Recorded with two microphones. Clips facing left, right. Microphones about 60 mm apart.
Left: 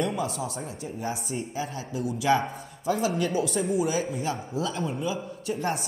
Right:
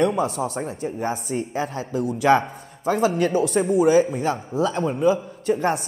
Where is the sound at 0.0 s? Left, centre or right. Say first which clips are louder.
Right 7 dB; right.